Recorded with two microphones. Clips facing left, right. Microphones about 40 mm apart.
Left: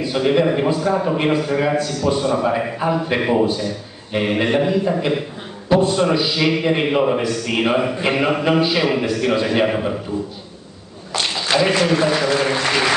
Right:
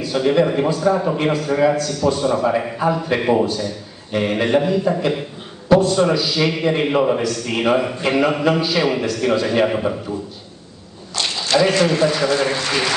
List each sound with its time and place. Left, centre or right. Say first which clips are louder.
0.0 s a man's voice: even; centre
11.2 s a sound: right 1 dB; centre
11.8 s a man's voice: even; centre